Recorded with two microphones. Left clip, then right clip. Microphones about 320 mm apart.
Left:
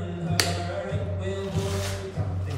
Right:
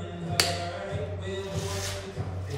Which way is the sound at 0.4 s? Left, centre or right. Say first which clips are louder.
Even; centre.